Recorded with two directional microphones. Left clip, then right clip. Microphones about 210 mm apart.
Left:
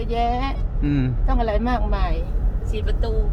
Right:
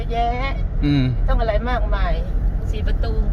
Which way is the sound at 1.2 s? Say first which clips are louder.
Right 1 dB; 55° left (ahead or behind).